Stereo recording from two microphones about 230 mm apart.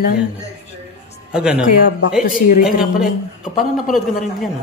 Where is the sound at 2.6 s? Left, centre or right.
Centre.